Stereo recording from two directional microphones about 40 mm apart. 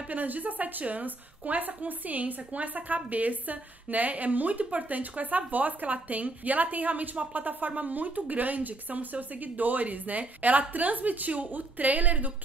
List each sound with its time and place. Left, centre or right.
0.1 s a woman's voice: right